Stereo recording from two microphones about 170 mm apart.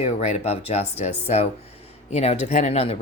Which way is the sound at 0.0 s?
40° left (ahead or behind).